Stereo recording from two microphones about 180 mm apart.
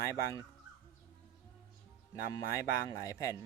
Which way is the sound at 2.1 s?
20° left (ahead or behind).